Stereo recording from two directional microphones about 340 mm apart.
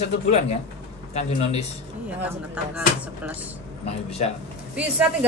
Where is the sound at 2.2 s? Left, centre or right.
Centre.